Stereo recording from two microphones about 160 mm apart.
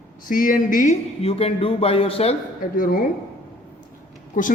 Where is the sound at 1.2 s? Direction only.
40° left (ahead or behind).